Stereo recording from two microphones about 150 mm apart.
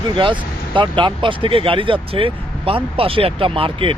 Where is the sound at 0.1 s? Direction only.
35° right (ahead or behind).